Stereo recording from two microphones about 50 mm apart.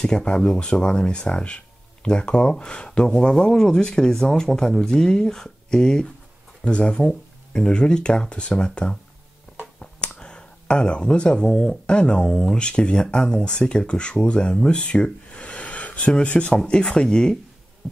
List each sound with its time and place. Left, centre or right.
0.0 s speech: centre
9.8 s a sound: centre
12.3 s speech: centre